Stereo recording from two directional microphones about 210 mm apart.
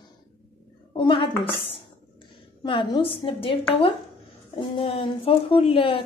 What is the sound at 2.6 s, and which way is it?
Speech, 20° left (ahead or behind).